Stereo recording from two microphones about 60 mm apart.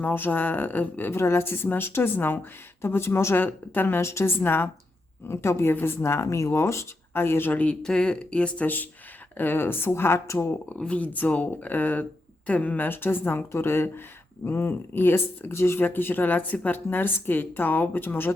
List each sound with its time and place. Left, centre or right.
0.0 s speech: left
1.1 s speech: left
3.3 s speech: left
4.0 s speech: left
4.4 s speech: left
5.3 s speech: left
7.1 s speech: left
7.5 s speech: left
7.8 s speech: centre
8.6 s speech: left
10.8 s speech: centre; by 15.8 s left
15.8 s speech: left